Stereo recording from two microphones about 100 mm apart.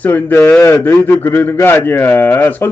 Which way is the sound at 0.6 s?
30° left (ahead or behind).